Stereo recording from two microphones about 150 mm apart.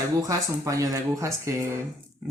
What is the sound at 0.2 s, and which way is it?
Speech, 20° right (ahead or behind).